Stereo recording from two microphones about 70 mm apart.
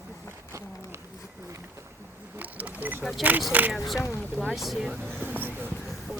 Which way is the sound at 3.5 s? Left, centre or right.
Right.